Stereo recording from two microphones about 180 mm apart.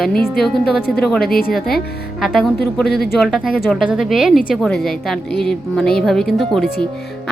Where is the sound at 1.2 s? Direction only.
55° left (ahead or behind).